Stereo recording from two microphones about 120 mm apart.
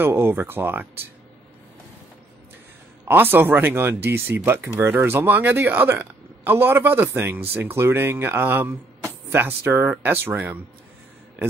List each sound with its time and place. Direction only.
0.0 s speech: 20° right (ahead or behind)
3.1 s speech: 15° right (ahead or behind)